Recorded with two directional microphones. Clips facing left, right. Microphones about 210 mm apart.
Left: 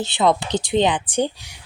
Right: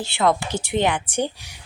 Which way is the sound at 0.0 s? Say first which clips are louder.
Left 2 dB; 20° left (ahead or behind).